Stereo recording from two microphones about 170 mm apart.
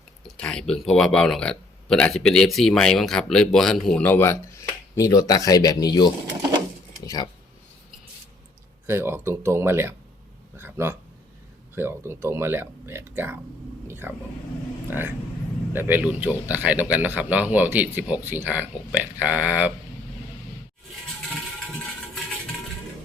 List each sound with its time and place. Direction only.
0.3 s speech: 5° left (ahead or behind); by 6.1 s 25° left (ahead or behind)
7.0 s a sound: 20° left (ahead or behind)
8.9 s speech: 15° right (ahead or behind)